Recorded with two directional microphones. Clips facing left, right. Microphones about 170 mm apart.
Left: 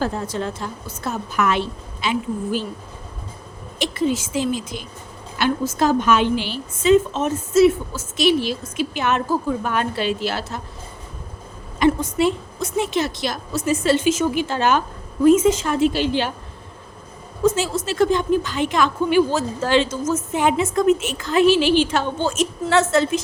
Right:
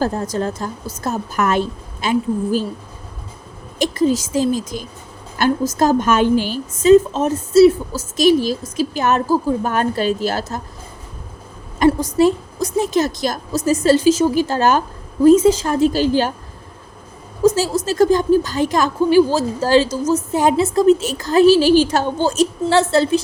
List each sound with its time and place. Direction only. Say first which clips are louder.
0.0 s a woman's voice: right 4 dB; 40° right (ahead or behind)
3.8 s a woman's voice: right 5 dB; 40° right (ahead or behind)
11.8 s a woman's voice: right 4 dB; 40° right (ahead or behind)
17.4 s a woman's voice: right 4 dB; 40° right (ahead or behind)